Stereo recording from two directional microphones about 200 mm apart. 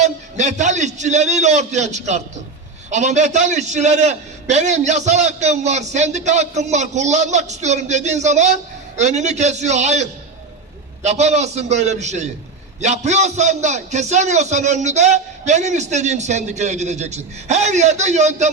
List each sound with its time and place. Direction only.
0.0 s a man's voice: 35° right (ahead or behind)